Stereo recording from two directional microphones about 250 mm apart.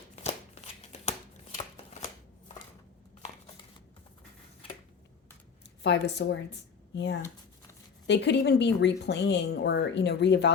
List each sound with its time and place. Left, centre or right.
0.2 s shuffling cards: left
5.8 s speech: left